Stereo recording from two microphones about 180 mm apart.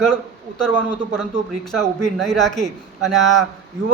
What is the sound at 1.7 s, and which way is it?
Speech, 5° left (ahead or behind).